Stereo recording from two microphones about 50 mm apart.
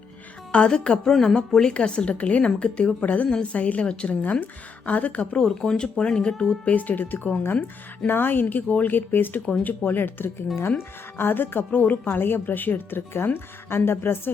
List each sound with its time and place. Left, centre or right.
0.5 s a woman's voice: centre
6.7 s a woman's voice: left